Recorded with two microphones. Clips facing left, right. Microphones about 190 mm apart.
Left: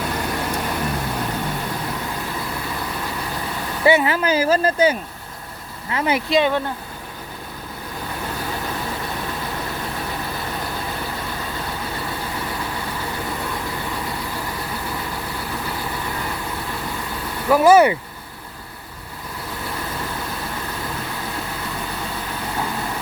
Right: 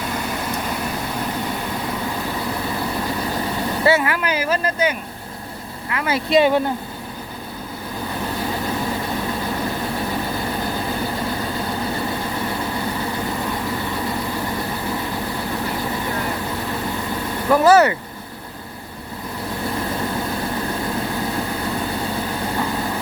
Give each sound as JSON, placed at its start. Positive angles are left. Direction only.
{"t": 3.8, "sound": "speech", "side_deg": 20}
{"t": 5.9, "sound": "speech", "side_deg": 20}
{"t": 6.3, "sound": "speech", "side_deg": -5}
{"t": 17.5, "sound": "speech", "side_deg": 10}